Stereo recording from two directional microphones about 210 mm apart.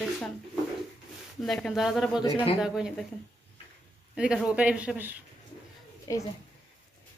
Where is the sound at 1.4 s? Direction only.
Centre (ahead or behind).